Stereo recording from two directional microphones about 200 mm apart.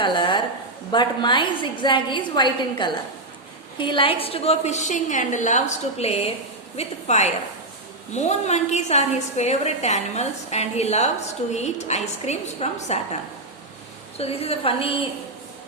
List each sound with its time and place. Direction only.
0.0 s a sound: 25° left (ahead or behind)
0.9 s a woman's voice: 25° left (ahead or behind)
14.2 s a woman's voice: 30° left (ahead or behind)